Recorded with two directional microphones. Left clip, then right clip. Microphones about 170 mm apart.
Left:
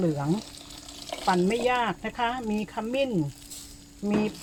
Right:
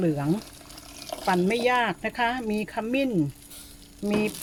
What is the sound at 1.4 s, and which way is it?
Speech, 25° right (ahead or behind).